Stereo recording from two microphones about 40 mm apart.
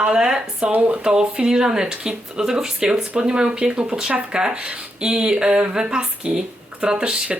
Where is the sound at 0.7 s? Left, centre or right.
Right.